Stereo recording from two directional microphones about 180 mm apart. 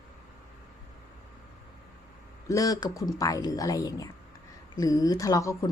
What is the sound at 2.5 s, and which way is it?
A woman's voice, 20° left (ahead or behind).